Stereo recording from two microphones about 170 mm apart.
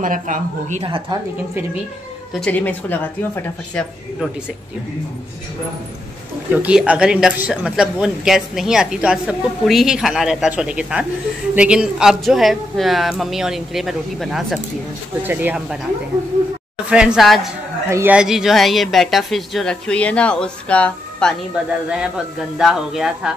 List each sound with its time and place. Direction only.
0.0 s a woman's voice: 50° right (ahead or behind)
2.3 s a woman's voice: 5° left (ahead or behind)
6.5 s speech: 5° right (ahead or behind)
15.2 s speech: 10° right (ahead or behind)
16.9 s speech: 5° right (ahead or behind)
17.8 s speech: 15° right (ahead or behind)
18.1 s speech: 5° right (ahead or behind)
21.6 s speech: 5° right (ahead or behind)